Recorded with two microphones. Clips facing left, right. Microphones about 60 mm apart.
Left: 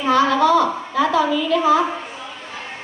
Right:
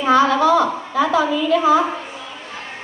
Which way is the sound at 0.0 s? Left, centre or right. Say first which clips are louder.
Right 1 dB; centre.